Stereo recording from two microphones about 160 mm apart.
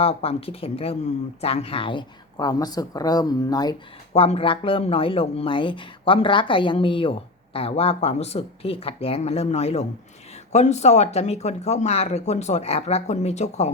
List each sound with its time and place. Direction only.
0.0 s speech: 40° left (ahead or behind)
4.1 s speech: 40° left (ahead or behind)